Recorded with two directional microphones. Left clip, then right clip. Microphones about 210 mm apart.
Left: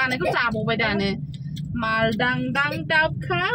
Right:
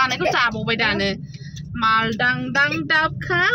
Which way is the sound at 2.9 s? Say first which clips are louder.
Right 1 dB; 30° right (ahead or behind).